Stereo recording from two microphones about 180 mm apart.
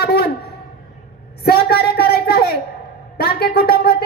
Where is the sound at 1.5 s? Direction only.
60° left (ahead or behind).